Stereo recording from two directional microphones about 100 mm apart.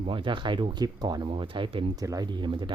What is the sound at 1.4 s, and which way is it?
Speech, 55° right (ahead or behind).